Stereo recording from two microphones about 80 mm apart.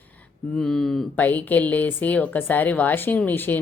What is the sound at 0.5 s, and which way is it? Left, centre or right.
Speech, centre.